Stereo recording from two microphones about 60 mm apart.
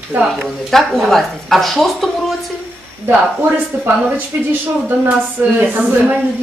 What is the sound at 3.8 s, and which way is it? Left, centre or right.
A woman's voice, right.